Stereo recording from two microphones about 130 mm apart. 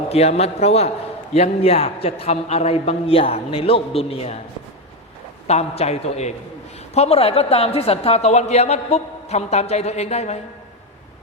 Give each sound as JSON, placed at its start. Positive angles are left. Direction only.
{"t": 0.1, "sound": "a man's voice", "side_deg": 55}
{"t": 5.5, "sound": "a woman's voice", "side_deg": 55}